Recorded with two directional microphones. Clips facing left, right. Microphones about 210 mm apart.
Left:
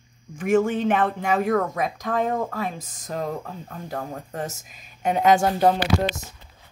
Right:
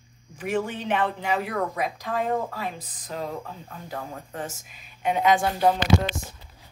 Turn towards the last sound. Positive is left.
turn(degrees=-45)  # may be behind; listen again after turning